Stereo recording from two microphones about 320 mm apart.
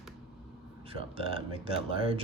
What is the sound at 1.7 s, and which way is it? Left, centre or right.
Speech, centre.